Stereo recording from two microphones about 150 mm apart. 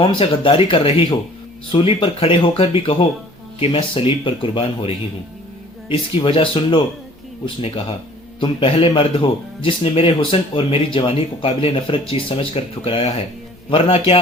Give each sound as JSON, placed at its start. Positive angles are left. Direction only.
{"t": 0.0, "sound": "speech", "side_deg": 35}